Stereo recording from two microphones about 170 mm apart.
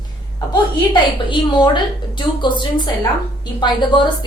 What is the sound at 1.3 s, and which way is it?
A woman's voice, 25° left (ahead or behind).